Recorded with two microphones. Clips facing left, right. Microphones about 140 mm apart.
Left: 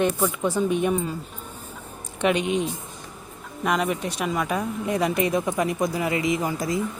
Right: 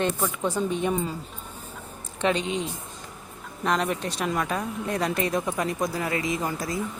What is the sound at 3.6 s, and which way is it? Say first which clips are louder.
Speech: left 2 dB; 10° left (ahead or behind).